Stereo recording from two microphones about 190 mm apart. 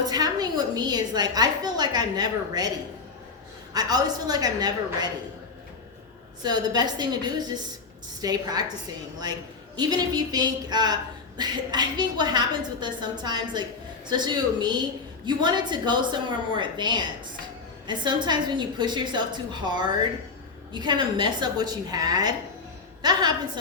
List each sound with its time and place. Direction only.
0.0 s a woman's voice: 20° right (ahead or behind)
6.4 s a woman's voice: 20° right (ahead or behind)